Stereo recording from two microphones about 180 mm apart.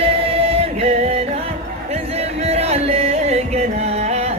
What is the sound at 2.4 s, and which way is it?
Music, 35° right (ahead or behind).